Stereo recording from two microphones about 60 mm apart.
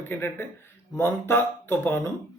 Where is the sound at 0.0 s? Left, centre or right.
Left.